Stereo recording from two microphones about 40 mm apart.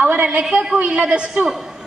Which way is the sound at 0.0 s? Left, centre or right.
Right.